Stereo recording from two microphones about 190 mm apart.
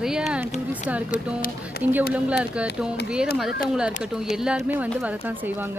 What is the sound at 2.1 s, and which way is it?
A woman's voice, 5° right (ahead or behind).